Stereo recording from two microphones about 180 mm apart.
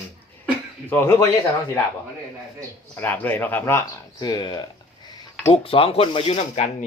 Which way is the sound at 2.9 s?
10° left (ahead or behind).